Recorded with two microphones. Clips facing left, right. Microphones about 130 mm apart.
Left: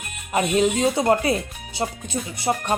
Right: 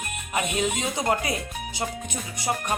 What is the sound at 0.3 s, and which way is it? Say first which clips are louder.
Speech: left 7 dB; 35° left (ahead or behind).